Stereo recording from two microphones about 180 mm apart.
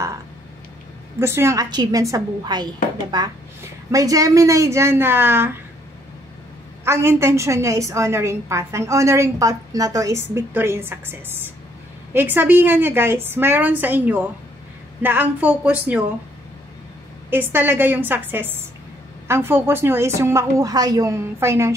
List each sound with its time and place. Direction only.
1.2 s a woman's voice: 15° right (ahead or behind)
6.8 s a woman's voice: 15° right (ahead or behind)
17.3 s a woman's voice: 10° right (ahead or behind)